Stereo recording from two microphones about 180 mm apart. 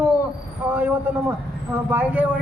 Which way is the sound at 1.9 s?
10° right (ahead or behind).